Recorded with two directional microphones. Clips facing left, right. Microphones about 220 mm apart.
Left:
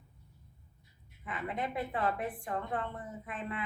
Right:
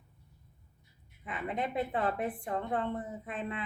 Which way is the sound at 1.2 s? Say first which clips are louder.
Right 2 dB; 20° right (ahead or behind).